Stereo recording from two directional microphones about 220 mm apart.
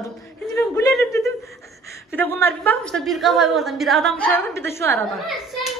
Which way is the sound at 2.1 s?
10° left (ahead or behind).